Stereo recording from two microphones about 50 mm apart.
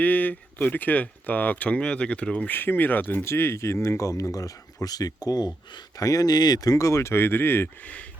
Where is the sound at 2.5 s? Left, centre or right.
Left.